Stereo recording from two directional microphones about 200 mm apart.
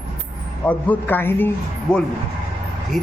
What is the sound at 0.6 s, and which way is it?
Speech, 5° left (ahead or behind).